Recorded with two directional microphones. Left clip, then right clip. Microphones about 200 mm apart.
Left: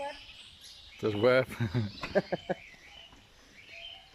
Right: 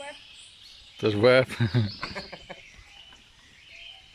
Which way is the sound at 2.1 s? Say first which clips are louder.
Left 9 dB; 35° left (ahead or behind).